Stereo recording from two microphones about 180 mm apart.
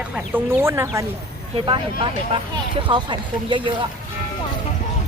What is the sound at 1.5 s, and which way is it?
Speech, 30° right (ahead or behind).